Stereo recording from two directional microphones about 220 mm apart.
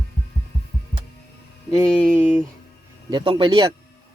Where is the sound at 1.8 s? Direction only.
5° left (ahead or behind).